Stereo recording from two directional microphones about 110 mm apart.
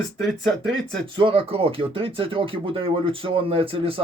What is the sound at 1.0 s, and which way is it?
Speech, 50° right (ahead or behind).